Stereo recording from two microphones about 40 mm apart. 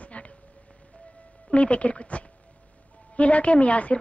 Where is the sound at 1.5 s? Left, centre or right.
Left.